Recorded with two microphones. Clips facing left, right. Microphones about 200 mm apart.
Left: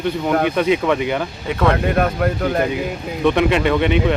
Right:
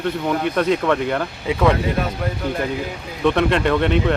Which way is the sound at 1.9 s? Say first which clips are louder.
Left 6 dB; 60° left (ahead or behind).